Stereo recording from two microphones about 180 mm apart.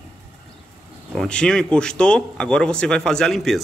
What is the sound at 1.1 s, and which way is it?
Speech, 5° left (ahead or behind).